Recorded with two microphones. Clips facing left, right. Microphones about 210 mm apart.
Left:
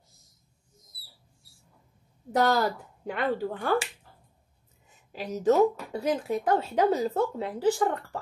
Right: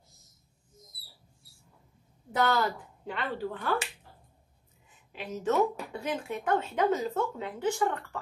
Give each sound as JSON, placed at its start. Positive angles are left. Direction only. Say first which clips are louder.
{"t": 2.3, "sound": "speech", "louder": "left 3 dB", "side_deg": 40}
{"t": 5.1, "sound": "speech", "louder": "left 5 dB", "side_deg": 40}